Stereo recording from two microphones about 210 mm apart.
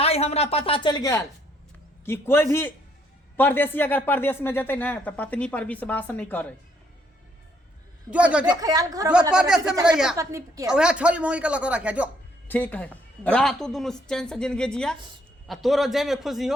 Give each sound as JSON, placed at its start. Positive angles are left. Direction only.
{"t": 0.0, "sound": "speech", "side_deg": 30}
{"t": 8.1, "sound": "a woman's voice", "side_deg": -5}
{"t": 8.4, "sound": "a woman's voice", "side_deg": -15}
{"t": 9.3, "sound": "a woman's voice", "side_deg": -5}
{"t": 10.2, "sound": "a woman's voice", "side_deg": -15}
{"t": 10.7, "sound": "a woman's voice", "side_deg": -5}
{"t": 12.5, "sound": "a woman's voice", "side_deg": 10}